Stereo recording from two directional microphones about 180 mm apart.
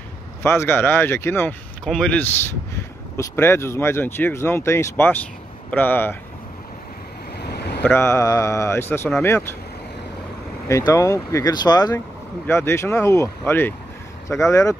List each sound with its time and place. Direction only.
0.4 s speech: 15° left (ahead or behind)
7.3 s waves: 65° left (ahead or behind)
7.8 s speech: 15° left (ahead or behind)
10.9 s speech: 15° left (ahead or behind)